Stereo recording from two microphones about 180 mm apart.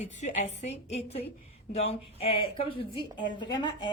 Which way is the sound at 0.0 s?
40° left (ahead or behind).